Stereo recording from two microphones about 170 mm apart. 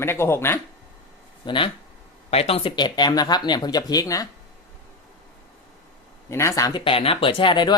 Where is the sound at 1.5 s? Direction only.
30° left (ahead or behind).